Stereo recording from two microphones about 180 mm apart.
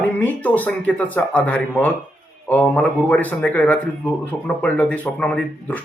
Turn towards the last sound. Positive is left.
turn(degrees=5)  # may be behind; listen again after turning